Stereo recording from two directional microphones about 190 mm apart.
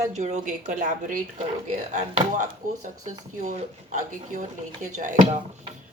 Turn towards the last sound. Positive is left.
turn(degrees=-40)  # may be behind; listen again after turning